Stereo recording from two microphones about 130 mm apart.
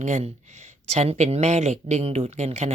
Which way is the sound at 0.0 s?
65° right (ahead or behind).